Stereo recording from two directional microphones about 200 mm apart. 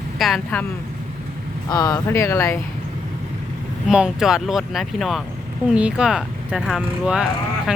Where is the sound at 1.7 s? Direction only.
20° left (ahead or behind).